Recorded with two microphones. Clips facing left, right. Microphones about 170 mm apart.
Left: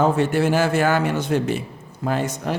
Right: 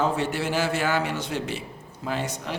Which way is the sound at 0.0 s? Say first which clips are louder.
Left 7 dB; 50° left (ahead or behind).